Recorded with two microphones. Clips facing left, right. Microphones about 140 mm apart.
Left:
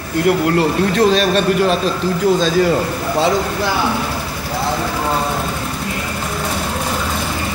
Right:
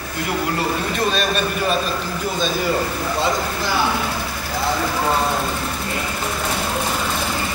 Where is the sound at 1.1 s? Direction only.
90° left.